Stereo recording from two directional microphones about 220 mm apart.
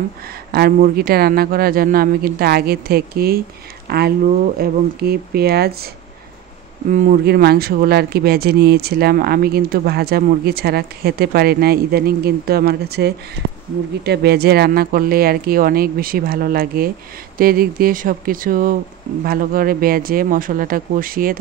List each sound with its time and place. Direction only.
0.5 s speech: 45° right (ahead or behind)
6.9 s speech: 35° right (ahead or behind)